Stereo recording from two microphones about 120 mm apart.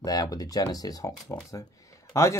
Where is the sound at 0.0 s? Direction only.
30° left (ahead or behind).